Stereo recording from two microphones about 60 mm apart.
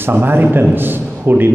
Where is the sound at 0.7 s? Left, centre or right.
Right.